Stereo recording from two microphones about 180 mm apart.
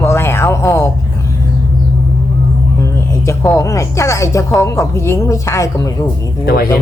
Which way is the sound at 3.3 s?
15° left (ahead or behind).